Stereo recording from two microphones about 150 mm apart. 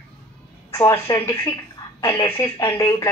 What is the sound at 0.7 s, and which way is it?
Speech, 20° left (ahead or behind).